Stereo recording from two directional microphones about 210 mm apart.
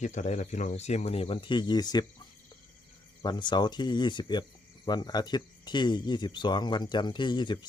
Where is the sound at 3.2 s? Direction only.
20° left (ahead or behind).